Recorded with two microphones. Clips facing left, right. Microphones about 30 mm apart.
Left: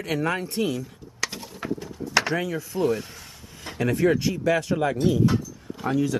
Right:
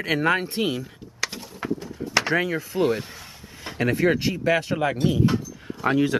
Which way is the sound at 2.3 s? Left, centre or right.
Right.